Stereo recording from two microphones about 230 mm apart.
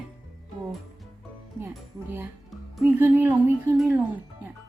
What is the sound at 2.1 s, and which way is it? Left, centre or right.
Speech, centre.